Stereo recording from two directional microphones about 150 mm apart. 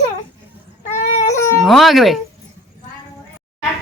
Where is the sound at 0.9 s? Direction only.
55° left (ahead or behind).